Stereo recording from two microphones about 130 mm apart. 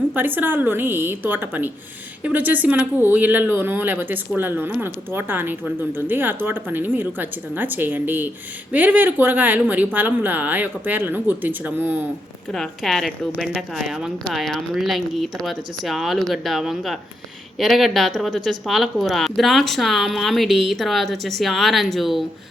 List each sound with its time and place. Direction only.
0.3 s speech: 15° right (ahead or behind)
12.5 s speech: centre (ahead or behind)